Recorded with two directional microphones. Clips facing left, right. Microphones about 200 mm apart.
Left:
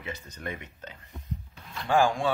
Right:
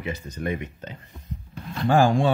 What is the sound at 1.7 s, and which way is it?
Speech, 40° right (ahead or behind).